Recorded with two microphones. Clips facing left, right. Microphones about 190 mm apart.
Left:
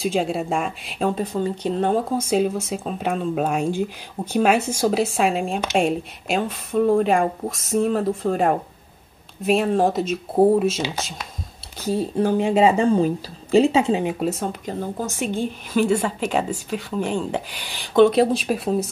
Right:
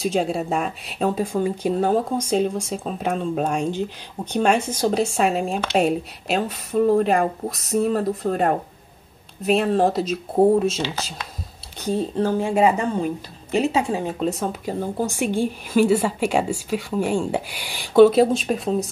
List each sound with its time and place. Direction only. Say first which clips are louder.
0.0 s speech: even; centre (ahead or behind)
11.8 s speech: left 1 dB; 5° left (ahead or behind)
14.2 s speech: right 1 dB; centre (ahead or behind)